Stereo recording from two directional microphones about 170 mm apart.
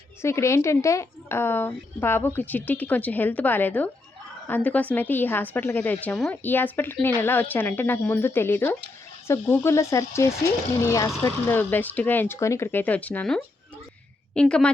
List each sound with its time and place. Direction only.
0.2 s a woman's voice: 15° left (ahead or behind)